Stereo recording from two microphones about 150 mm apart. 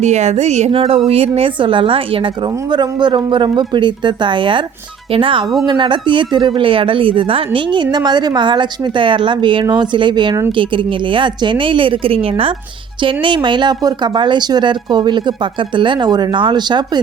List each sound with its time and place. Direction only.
0.0 s speech: 50° right (ahead or behind); by 17.0 s 30° right (ahead or behind)